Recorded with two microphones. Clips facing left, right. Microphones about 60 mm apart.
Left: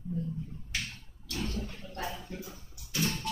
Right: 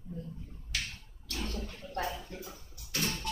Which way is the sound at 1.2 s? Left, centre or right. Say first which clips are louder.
Left 2 dB; right.